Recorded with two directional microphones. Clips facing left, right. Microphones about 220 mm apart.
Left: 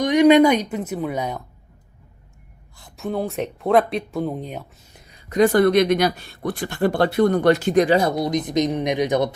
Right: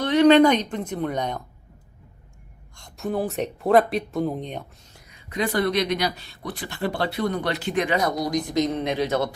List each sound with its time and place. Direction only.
0.0 s a woman's voice: 15° left (ahead or behind)
2.7 s speech: centre (ahead or behind)
5.1 s speech: 45° left (ahead or behind); by 9.3 s 15° left (ahead or behind)